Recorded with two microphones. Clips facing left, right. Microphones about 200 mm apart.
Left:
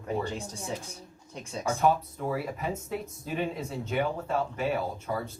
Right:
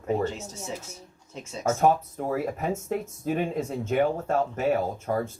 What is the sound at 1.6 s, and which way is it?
Speech, 45° right (ahead or behind).